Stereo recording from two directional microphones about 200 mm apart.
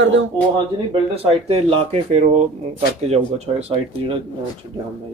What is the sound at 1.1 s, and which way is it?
Speech, 30° right (ahead or behind).